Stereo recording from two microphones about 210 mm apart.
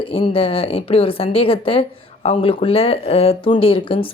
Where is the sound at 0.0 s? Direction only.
25° left (ahead or behind).